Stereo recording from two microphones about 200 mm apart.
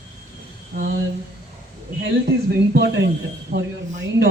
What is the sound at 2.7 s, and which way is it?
Speech, 60° right (ahead or behind).